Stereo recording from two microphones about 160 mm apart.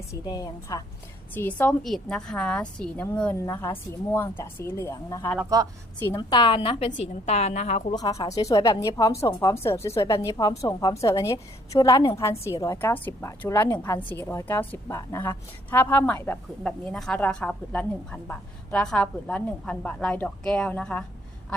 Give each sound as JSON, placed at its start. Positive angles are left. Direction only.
{"t": 0.1, "sound": "speech", "side_deg": 25}
{"t": 1.3, "sound": "a woman's voice", "side_deg": 10}
{"t": 7.9, "sound": "a woman's voice", "side_deg": 25}